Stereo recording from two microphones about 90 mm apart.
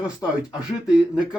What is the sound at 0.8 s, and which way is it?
Speech, 5° right (ahead or behind).